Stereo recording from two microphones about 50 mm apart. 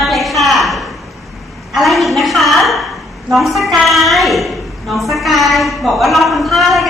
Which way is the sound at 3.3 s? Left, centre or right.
Centre.